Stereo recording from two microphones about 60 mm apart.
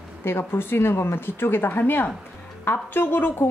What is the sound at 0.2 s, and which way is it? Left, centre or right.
Speech, left.